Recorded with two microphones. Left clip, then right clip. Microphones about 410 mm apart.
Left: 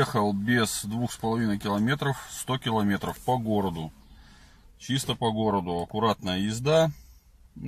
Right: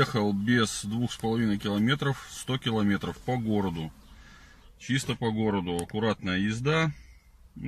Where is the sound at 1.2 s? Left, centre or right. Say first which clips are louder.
Left 1 dB; centre.